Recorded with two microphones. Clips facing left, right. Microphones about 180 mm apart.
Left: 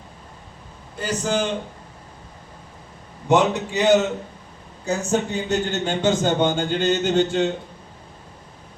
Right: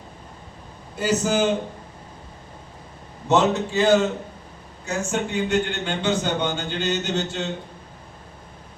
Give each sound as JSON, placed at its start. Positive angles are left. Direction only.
{"t": 0.9, "sound": "a man's voice", "side_deg": -5}
{"t": 3.2, "sound": "a man's voice", "side_deg": 15}
{"t": 4.9, "sound": "speech", "side_deg": 40}